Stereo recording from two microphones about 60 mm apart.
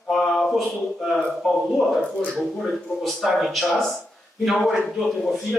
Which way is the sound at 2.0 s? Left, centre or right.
Centre.